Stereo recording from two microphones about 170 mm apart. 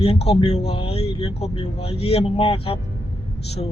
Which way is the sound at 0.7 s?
35° left (ahead or behind).